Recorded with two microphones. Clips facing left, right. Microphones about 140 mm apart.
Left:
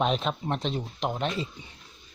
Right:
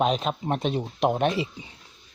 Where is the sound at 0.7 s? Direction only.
30° right (ahead or behind).